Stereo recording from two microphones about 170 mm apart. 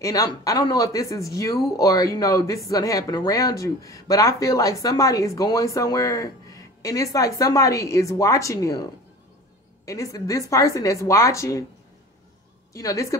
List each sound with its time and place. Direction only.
0.0 s speech: 20° left (ahead or behind)
9.8 s speech: 20° left (ahead or behind)
12.7 s speech: 20° left (ahead or behind)